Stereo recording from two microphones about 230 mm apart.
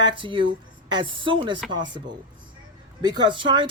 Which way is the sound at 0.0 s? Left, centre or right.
Right.